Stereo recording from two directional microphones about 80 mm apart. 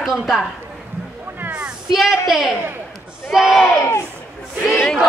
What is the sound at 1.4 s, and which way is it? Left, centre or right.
Cat, centre.